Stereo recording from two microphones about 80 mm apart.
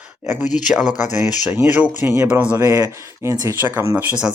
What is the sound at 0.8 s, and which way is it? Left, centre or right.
Speech, left.